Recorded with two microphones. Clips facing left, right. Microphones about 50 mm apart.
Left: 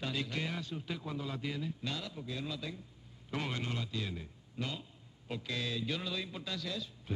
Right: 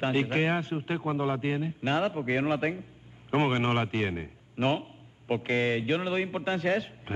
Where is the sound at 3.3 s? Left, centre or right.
Right.